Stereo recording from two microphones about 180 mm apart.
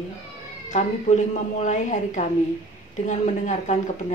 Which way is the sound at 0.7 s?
40° left (ahead or behind).